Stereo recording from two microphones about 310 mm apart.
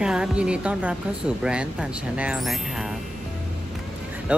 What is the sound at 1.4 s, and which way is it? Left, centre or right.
Speech, centre.